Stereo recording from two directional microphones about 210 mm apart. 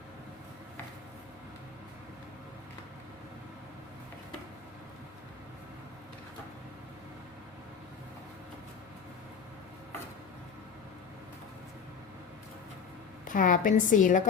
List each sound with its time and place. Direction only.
13.2 s a woman's voice: 40° left (ahead or behind)